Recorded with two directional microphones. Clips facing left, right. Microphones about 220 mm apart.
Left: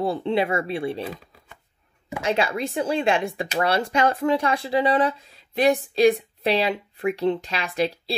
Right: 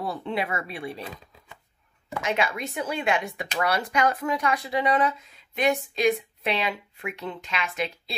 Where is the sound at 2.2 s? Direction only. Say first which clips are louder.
Left 4 dB; 30° left (ahead or behind).